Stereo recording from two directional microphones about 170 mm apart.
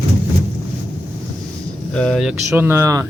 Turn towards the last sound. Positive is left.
turn(degrees=-15)  # may be behind; listen again after turning